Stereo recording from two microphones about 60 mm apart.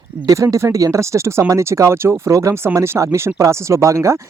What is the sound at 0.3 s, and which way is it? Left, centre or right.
Speech, right.